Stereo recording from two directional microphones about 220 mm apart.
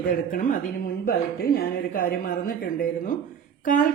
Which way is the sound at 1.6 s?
40° left (ahead or behind).